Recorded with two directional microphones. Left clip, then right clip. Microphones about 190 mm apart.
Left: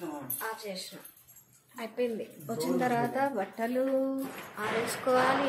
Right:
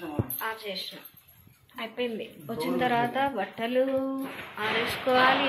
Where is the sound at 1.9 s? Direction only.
10° left (ahead or behind).